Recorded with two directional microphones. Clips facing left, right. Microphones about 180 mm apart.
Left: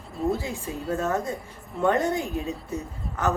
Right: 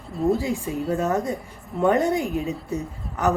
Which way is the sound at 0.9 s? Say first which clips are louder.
Right 2 dB; 15° right (ahead or behind).